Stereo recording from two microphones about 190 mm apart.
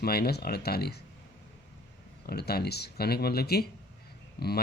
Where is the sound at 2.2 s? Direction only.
55° left (ahead or behind).